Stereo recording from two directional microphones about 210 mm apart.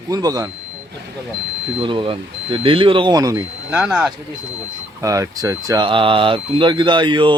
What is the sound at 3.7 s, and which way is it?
Speech, 5° right (ahead or behind).